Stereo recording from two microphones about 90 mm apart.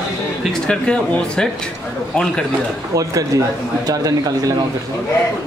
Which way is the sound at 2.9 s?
40° right (ahead or behind).